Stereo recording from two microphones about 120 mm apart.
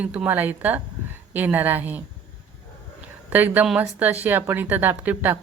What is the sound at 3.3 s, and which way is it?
A woman's voice, 15° right (ahead or behind).